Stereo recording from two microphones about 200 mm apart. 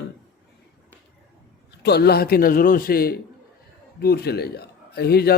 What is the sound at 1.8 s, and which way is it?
Speech, 55° left (ahead or behind).